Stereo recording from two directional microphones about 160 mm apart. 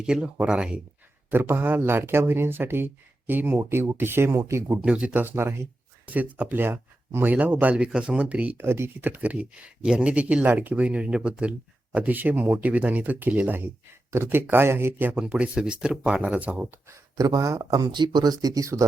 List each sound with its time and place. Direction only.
0.0 s speech: 5° right (ahead or behind)
16.9 s speech: 20° right (ahead or behind)